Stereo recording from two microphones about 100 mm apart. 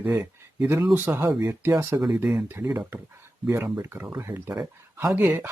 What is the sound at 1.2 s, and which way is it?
Speech, 30° right (ahead or behind).